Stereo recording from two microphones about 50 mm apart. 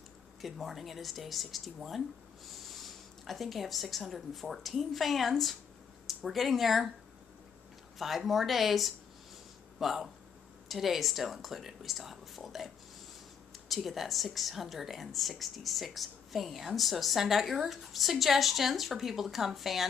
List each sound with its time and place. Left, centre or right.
0.4 s speech: centre
8.0 s speech: centre